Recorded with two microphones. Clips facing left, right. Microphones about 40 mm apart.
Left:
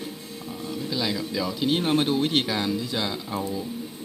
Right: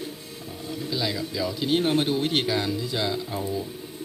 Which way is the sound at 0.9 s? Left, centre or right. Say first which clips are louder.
Even; centre.